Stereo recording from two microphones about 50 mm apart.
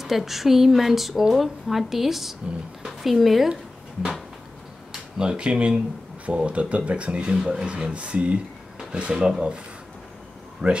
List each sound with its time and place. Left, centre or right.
0.0 s speech: centre
4.9 s speech: centre
9.1 s speech: centre
10.6 s speech: centre